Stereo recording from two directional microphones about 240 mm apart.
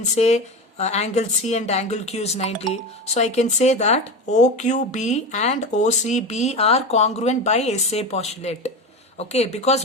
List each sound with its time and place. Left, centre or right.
0.0 s speech: left